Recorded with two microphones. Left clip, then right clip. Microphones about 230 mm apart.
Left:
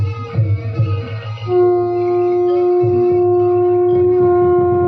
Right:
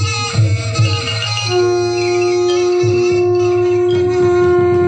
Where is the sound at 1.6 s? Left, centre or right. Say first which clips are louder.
Left 2 dB; right.